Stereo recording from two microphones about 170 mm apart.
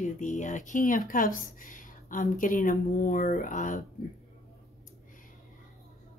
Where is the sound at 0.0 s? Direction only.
45° left (ahead or behind).